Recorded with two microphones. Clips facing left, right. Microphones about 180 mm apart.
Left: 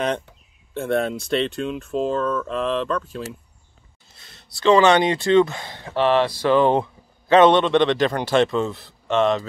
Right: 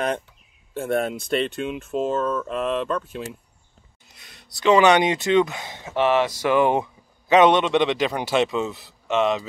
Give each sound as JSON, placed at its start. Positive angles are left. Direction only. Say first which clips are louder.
{"t": 0.8, "sound": "a man's voice", "louder": "left 1 dB", "side_deg": -5}